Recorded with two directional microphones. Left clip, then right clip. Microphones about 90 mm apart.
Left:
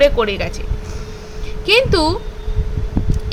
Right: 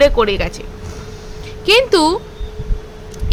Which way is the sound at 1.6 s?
40° right (ahead or behind).